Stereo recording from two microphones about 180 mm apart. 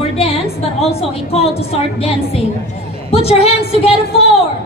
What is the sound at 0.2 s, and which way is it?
A woman's voice, 35° left (ahead or behind).